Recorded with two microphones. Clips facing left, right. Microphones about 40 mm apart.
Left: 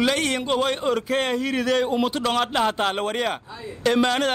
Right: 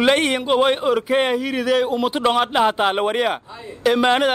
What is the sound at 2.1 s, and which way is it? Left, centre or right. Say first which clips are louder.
A man's voice: right 5 dB; right.